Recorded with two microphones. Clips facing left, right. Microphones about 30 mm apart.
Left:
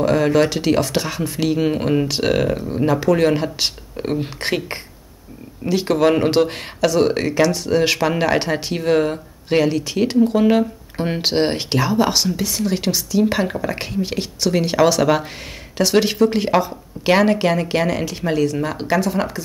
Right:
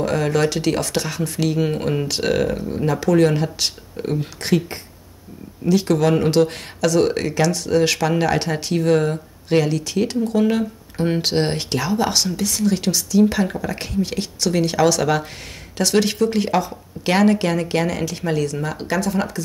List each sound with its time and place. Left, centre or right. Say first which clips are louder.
0.0 s speech: left 3 dB; centre